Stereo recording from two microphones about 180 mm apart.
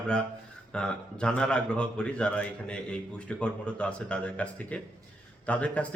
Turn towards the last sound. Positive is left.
turn(degrees=5)  # may be behind; listen again after turning